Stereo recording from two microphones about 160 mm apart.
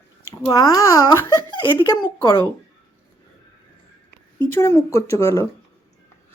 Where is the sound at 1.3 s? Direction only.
30° left (ahead or behind).